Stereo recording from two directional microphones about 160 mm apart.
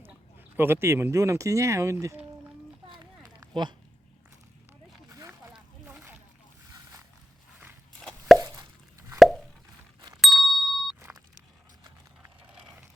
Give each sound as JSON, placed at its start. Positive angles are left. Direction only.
{"t": 0.0, "sound": "speech", "side_deg": -15}
{"t": 2.9, "sound": "a sound", "side_deg": -25}
{"t": 5.5, "sound": "a sound", "side_deg": -5}
{"t": 7.9, "sound": "plop", "side_deg": 5}
{"t": 8.4, "sound": "plop", "side_deg": -20}
{"t": 9.1, "sound": "plop", "side_deg": 0}
{"t": 10.2, "sound": "ding", "side_deg": 0}
{"t": 12.2, "sound": "vehicle", "side_deg": -5}